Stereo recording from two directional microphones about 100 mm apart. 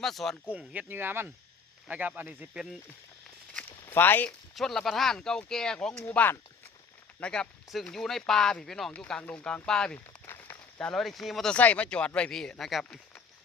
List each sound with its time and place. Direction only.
0.0 s speech: centre (ahead or behind)
0.5 s speech: 15° right (ahead or behind)
3.5 s walk: 15° left (ahead or behind)
4.5 s speech: 5° left (ahead or behind)
7.2 s speech: 10° left (ahead or behind)
10.2 s a sound: 25° left (ahead or behind)
10.8 s speech: 5° left (ahead or behind)
11.5 s speech: 15° left (ahead or behind)